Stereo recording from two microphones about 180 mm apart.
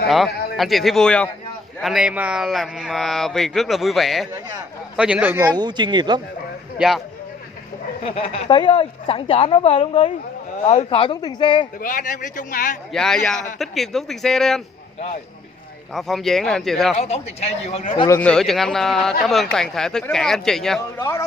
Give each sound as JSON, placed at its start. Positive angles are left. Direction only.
{"t": 0.1, "sound": "a man's voice", "side_deg": 0}
{"t": 5.6, "sound": "speech", "side_deg": -25}
{"t": 8.0, "sound": "a woman's voice", "side_deg": 35}
{"t": 11.8, "sound": "a man's voice", "side_deg": 50}
{"t": 12.9, "sound": "speech", "side_deg": 5}
{"t": 15.9, "sound": "speech", "side_deg": 0}
{"t": 16.9, "sound": "a woman's voice", "side_deg": 35}
{"t": 18.0, "sound": "speech", "side_deg": 10}